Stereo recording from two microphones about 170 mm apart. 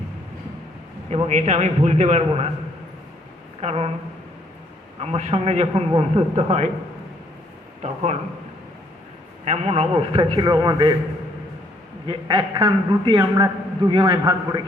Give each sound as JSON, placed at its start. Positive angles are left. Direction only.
{"t": 1.1, "sound": "a man's voice", "side_deg": -40}
{"t": 3.6, "sound": "a man's voice", "side_deg": -40}
{"t": 4.9, "sound": "a man's voice", "side_deg": -40}
{"t": 9.4, "sound": "a man's voice", "side_deg": -40}
{"t": 12.0, "sound": "a man's voice", "side_deg": -30}